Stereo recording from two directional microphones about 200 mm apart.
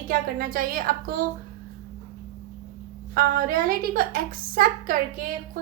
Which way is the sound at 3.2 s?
45° right (ahead or behind).